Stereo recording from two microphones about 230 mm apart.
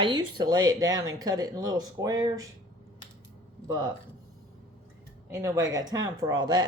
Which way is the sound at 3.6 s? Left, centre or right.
Centre.